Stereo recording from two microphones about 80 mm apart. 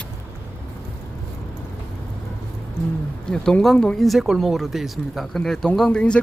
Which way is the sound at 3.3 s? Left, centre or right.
Centre.